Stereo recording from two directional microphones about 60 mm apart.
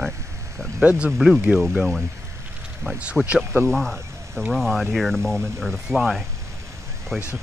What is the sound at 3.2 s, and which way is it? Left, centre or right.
Speech, centre.